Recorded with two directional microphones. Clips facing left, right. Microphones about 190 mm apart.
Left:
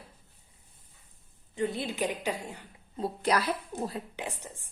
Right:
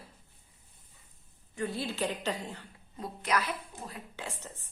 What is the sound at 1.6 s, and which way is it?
A woman's voice, 20° left (ahead or behind).